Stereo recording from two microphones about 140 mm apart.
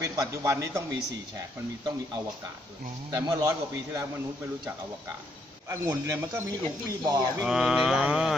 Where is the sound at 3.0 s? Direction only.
30° right (ahead or behind).